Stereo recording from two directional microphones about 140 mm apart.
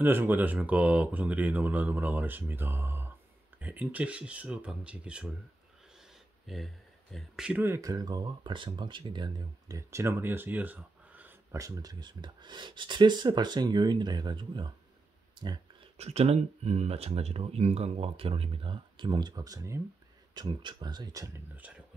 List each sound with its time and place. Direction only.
0.0 s speech: 15° right (ahead or behind)
6.4 s speech: centre (ahead or behind)
7.6 s speech: 20° right (ahead or behind)
11.5 s speech: 25° right (ahead or behind)
15.3 s a sound: 35° right (ahead or behind)
16.0 s speech: 50° right (ahead or behind); by 21.3 s 25° right (ahead or behind)
21.5 s speech: 10° right (ahead or behind)